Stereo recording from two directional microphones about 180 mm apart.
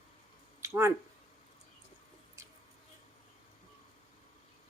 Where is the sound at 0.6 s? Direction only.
15° right (ahead or behind).